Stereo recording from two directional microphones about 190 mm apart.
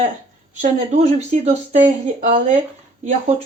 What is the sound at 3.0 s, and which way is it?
Speech, 35° right (ahead or behind).